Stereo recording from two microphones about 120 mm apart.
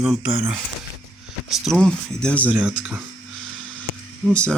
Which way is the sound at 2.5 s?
10° right (ahead or behind).